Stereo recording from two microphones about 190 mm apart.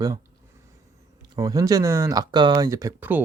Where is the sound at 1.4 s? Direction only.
20° right (ahead or behind).